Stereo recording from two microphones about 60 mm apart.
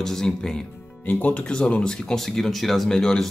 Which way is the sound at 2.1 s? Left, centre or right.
Centre.